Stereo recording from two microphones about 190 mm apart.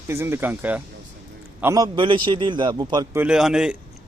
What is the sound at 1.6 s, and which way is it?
A man's voice, 20° right (ahead or behind).